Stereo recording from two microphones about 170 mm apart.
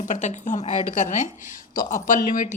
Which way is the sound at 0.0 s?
45° left (ahead or behind).